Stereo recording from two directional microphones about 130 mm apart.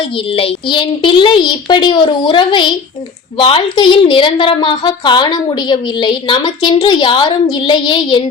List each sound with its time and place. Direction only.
0.3 s a woman's voice: 45° left (ahead or behind)